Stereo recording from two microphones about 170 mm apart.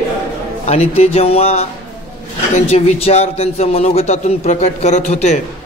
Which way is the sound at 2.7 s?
35° left (ahead or behind).